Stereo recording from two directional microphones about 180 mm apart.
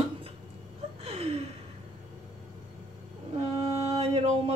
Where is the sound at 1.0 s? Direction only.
35° right (ahead or behind).